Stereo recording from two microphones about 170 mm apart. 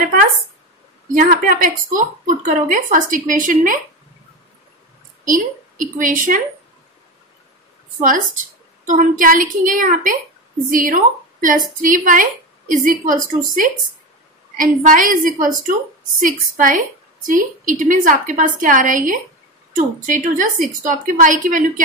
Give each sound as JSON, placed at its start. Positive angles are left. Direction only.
{"t": 1.1, "sound": "a woman's voice", "side_deg": -55}
{"t": 5.2, "sound": "a woman's voice", "side_deg": -55}
{"t": 8.8, "sound": "a woman's voice", "side_deg": -50}